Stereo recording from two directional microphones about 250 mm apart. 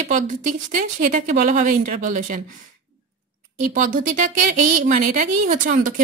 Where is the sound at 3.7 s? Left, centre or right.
Right.